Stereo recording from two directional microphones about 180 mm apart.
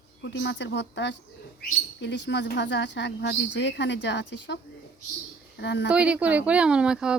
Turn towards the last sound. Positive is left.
turn(degrees=-5)  # may be behind; listen again after turning